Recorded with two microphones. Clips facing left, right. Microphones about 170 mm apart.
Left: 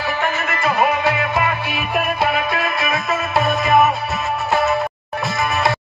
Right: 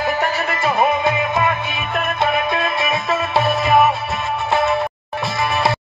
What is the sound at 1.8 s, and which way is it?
Music, 10° left (ahead or behind).